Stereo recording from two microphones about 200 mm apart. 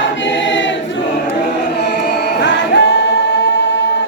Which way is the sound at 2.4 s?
60° left (ahead or behind).